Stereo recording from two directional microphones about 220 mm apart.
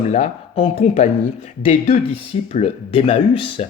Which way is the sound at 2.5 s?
30° left (ahead or behind).